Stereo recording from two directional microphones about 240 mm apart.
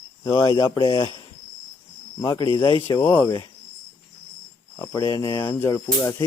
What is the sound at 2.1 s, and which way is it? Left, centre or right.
Speech, centre.